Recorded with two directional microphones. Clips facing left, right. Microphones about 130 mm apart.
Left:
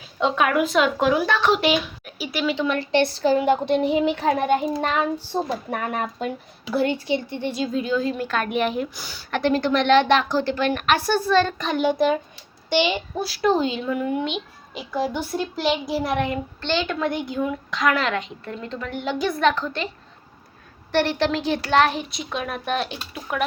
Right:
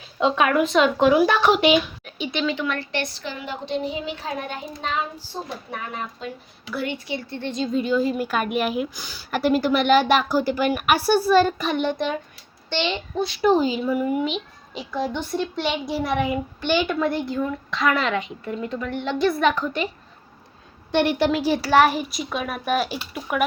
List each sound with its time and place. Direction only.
0.2 s a child's voice: centre (ahead or behind); by 3.3 s 30° left (ahead or behind)
3.3 s a child's voice: 50° left (ahead or behind)
6.7 s speech: 35° left (ahead or behind)
7.1 s a child's voice: 20° left (ahead or behind); by 18.9 s 10° right (ahead or behind)
18.9 s a child's voice: centre (ahead or behind)
20.9 s speech: 15° right (ahead or behind)